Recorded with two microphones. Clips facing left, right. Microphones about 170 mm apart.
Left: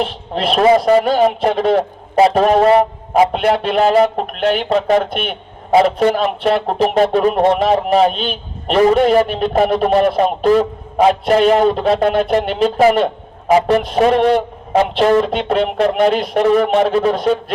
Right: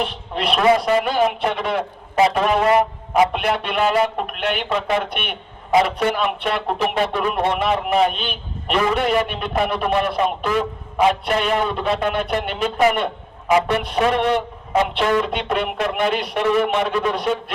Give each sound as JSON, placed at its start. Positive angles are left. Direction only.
{"t": 0.5, "sound": "a man's voice", "side_deg": 35}